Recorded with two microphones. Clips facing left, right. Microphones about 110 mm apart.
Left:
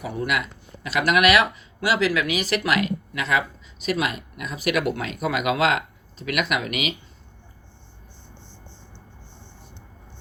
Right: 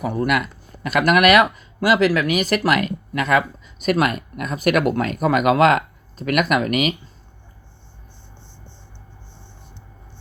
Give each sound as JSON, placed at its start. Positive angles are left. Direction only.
{"t": 0.0, "sound": "speech", "side_deg": -45}